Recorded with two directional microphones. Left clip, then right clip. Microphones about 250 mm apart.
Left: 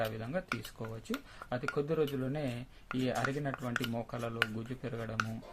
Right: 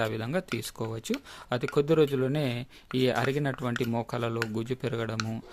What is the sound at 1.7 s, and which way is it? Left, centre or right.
A man's voice, right.